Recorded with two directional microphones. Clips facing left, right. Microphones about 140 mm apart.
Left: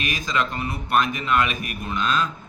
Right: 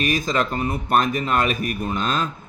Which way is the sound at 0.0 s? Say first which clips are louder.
Right 4 dB; 40° right (ahead or behind).